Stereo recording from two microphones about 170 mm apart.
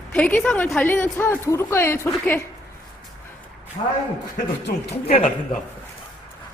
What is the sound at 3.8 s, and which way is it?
Speech, 35° left (ahead or behind).